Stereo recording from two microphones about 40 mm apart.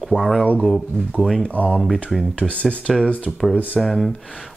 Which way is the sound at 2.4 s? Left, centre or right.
Right.